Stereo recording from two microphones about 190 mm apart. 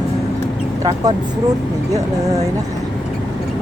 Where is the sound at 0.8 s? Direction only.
20° right (ahead or behind).